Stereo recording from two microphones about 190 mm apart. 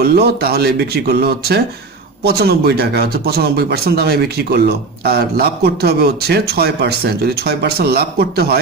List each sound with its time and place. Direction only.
0.0 s a man's voice: 55° right (ahead or behind)